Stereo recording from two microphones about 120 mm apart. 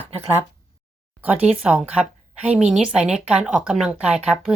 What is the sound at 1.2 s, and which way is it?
Speech, 10° right (ahead or behind).